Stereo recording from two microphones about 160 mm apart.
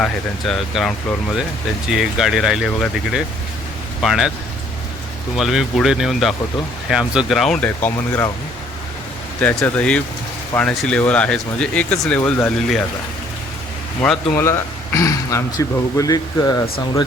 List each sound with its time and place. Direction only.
0.0 s speech: centre (ahead or behind)
5.4 s speech: centre (ahead or behind)
9.4 s speech: 10° left (ahead or behind)
14.3 s speech: 15° left (ahead or behind)